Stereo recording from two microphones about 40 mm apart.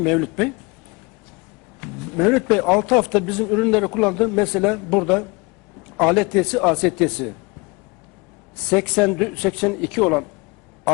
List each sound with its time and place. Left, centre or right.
0.0 s a man's voice: centre
1.8 s a man's voice: centre
8.5 s a man's voice: centre
10.9 s a sound: centre